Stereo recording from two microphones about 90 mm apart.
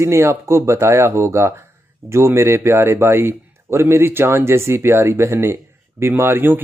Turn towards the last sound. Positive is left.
turn(degrees=-25)  # may be behind; listen again after turning